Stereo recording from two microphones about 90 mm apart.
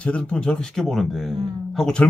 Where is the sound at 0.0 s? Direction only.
15° left (ahead or behind).